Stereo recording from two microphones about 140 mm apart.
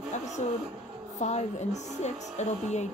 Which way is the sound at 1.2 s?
55° left (ahead or behind).